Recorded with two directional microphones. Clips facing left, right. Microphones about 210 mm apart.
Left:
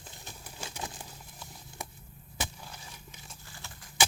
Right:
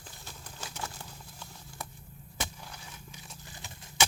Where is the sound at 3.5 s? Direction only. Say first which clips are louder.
Even; 20° right (ahead or behind).